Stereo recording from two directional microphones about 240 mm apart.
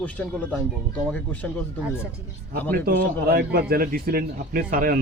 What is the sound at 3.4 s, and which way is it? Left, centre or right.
Speech, right.